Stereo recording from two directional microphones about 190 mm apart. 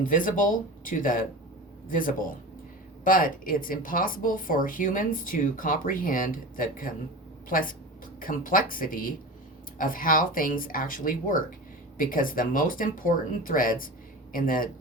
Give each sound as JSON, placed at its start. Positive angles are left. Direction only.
{"t": 0.0, "sound": "speech", "side_deg": 45}